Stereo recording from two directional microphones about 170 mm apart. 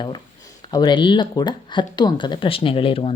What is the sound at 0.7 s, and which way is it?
Speech, 25° left (ahead or behind).